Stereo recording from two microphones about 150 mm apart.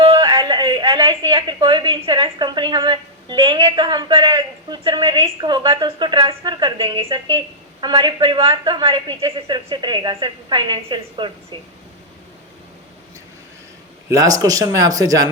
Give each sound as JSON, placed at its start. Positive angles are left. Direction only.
{"t": 0.0, "sound": "a woman's voice", "side_deg": -30}
{"t": 14.1, "sound": "speech", "side_deg": -20}